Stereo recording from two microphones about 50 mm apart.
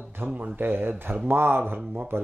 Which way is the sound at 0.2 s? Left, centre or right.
Right.